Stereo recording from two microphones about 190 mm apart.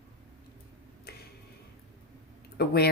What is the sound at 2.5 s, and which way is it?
Speech, 55° left (ahead or behind).